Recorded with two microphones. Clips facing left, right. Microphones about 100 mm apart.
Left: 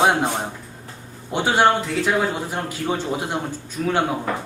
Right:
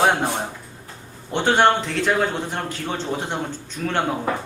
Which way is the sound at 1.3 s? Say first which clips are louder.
Even; 5° left (ahead or behind).